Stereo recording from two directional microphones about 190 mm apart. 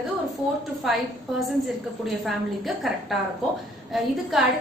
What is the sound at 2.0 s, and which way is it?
A woman's voice, centre (ahead or behind).